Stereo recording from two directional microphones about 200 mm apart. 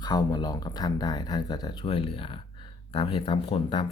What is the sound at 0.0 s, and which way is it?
Speech, 20° left (ahead or behind).